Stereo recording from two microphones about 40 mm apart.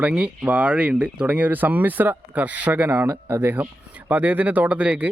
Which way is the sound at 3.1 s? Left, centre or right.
Right.